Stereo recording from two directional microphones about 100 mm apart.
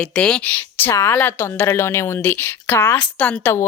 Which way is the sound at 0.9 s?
30° left (ahead or behind).